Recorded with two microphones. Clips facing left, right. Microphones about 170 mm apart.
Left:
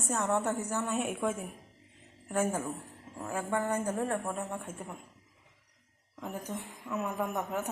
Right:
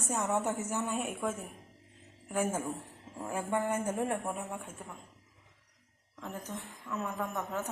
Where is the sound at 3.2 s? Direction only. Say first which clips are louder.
Even; 25° right (ahead or behind).